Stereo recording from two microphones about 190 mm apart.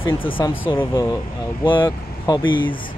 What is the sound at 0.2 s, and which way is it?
Speech, 25° left (ahead or behind).